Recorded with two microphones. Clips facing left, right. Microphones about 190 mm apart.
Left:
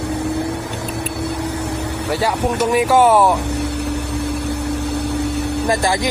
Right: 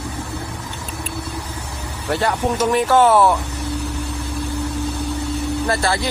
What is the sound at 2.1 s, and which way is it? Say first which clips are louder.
Speech: even; 10° left (ahead or behind).